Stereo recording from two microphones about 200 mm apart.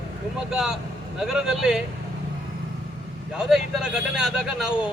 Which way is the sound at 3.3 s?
5° right (ahead or behind).